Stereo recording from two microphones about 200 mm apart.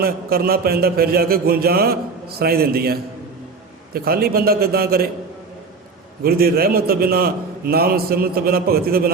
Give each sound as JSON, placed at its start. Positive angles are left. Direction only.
{"t": 0.0, "sound": "a man's voice", "side_deg": -50}
{"t": 6.2, "sound": "a man's voice", "side_deg": -50}